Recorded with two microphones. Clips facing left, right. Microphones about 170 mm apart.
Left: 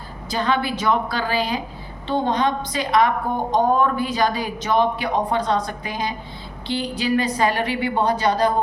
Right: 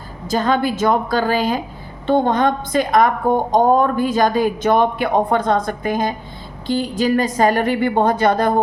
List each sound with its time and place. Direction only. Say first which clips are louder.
0.3 s speech: right 4 dB; 45° right (ahead or behind)